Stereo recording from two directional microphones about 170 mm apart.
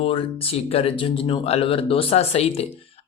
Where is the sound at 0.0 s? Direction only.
35° left (ahead or behind).